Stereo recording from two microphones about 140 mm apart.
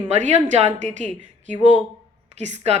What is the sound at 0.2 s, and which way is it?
A woman's voice, 55° right (ahead or behind).